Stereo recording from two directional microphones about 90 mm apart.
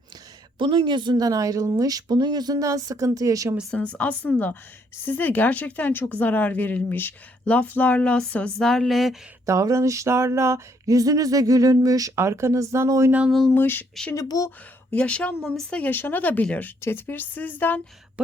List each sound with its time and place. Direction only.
0.6 s speech: 65° right (ahead or behind); by 3.5 s 40° right (ahead or behind)
3.9 s a woman's voice: 15° left (ahead or behind); by 9.1 s centre (ahead or behind)
9.5 s a sound: 35° right (ahead or behind)
13.5 s a woman's voice: 20° left (ahead or behind)
14.2 s speech: 40° left (ahead or behind)
14.8 s a woman's voice: 15° left (ahead or behind)
15.4 s speech: centre (ahead or behind)
15.7 s a woman's voice: 20° left (ahead or behind)